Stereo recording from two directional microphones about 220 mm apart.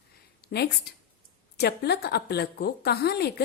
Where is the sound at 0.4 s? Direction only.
45° left (ahead or behind).